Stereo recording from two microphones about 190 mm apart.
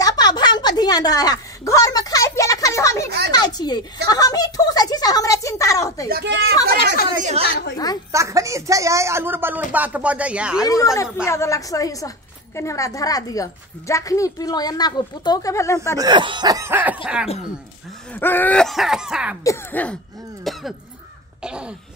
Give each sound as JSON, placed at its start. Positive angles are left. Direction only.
{"t": 0.0, "sound": "a sound", "side_deg": 20}
{"t": 3.3, "sound": "a woman's voice", "side_deg": 20}
{"t": 6.0, "sound": "speech", "side_deg": -60}
{"t": 7.7, "sound": "a woman's voice", "side_deg": 20}
{"t": 8.1, "sound": "a woman's voice", "side_deg": -15}
{"t": 11.2, "sound": "a woman's voice", "side_deg": 15}
{"t": 16.0, "sound": "a woman's voice", "side_deg": -25}
{"t": 18.1, "sound": "a sound", "side_deg": 10}
{"t": 19.4, "sound": "a woman's voice", "side_deg": 10}
{"t": 20.5, "sound": "cough", "side_deg": 0}
{"t": 21.4, "sound": "speech", "side_deg": -5}